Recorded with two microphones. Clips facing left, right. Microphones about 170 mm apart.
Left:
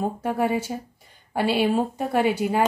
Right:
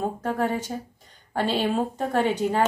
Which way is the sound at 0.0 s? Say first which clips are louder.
Left 2 dB; 10° left (ahead or behind).